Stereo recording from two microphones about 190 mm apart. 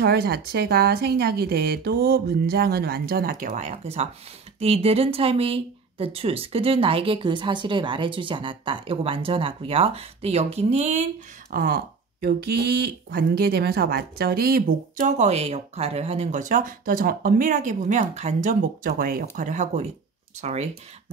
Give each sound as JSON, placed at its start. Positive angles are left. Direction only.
{"t": 0.0, "sound": "a woman's voice", "side_deg": -55}
{"t": 11.5, "sound": "speech", "side_deg": -50}